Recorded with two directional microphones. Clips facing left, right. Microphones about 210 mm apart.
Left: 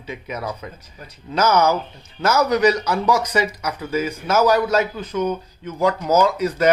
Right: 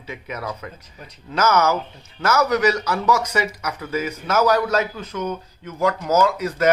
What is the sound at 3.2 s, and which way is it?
Speech, 35° left (ahead or behind).